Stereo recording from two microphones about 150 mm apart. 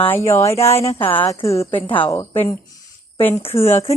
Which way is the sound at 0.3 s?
20° left (ahead or behind).